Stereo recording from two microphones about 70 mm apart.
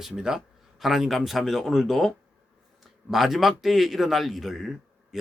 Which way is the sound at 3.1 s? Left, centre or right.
Centre.